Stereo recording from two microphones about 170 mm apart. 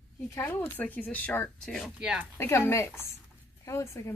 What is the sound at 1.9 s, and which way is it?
Speech, 5° right (ahead or behind).